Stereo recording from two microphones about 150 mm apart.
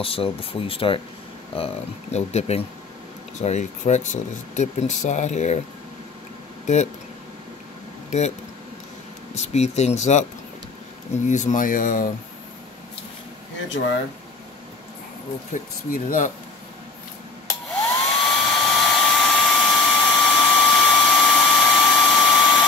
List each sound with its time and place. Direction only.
0.0 s speech: 40° left (ahead or behind)
6.6 s speech: 50° left (ahead or behind)
8.1 s speech: 55° left (ahead or behind)
9.3 s speech: 50° left (ahead or behind)
11.2 s speech: 55° left (ahead or behind)
13.8 s speech: 90° left
15.9 s speech: 65° left (ahead or behind)
18.2 s hair dryer: 5° left (ahead or behind)